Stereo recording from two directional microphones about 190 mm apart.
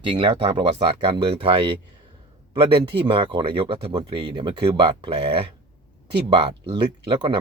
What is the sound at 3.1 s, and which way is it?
Speech, 25° right (ahead or behind).